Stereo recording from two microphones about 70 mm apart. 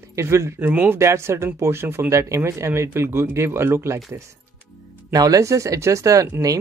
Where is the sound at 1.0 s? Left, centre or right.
Right.